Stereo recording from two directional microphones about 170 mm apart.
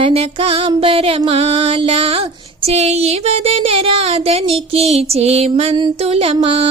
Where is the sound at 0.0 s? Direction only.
35° right (ahead or behind).